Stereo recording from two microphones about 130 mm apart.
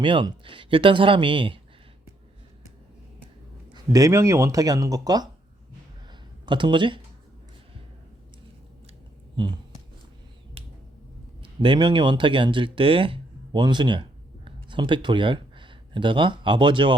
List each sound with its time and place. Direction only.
0.0 s speech: 40° right (ahead or behind)
3.7 s speech: 25° right (ahead or behind)
6.1 s a sound: 35° right (ahead or behind)
9.3 s speech: 40° right (ahead or behind)
10.6 s finger snapping: 45° right (ahead or behind)
11.4 s speech: 40° right (ahead or behind)